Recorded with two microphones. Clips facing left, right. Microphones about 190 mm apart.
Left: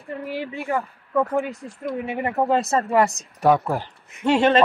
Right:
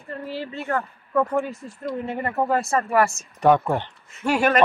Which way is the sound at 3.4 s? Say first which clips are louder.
Right 1 dB; 5° left (ahead or behind).